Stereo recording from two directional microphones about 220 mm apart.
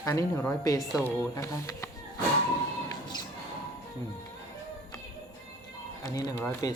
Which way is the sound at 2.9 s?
20° left (ahead or behind).